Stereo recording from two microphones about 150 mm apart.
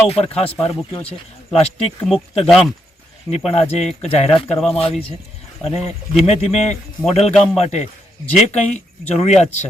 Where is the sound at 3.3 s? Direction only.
45° left (ahead or behind).